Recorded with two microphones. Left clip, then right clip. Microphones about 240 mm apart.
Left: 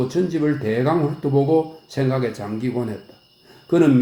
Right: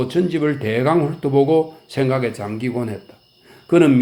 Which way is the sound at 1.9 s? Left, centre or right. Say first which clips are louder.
Right 3 dB; right.